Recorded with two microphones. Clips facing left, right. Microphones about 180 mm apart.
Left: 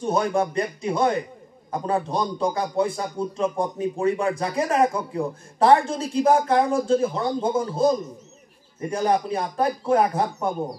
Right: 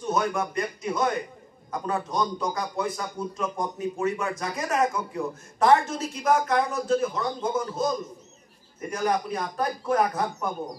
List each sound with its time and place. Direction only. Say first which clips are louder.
0.0 s a man's voice: left 4 dB; 30° left (ahead or behind)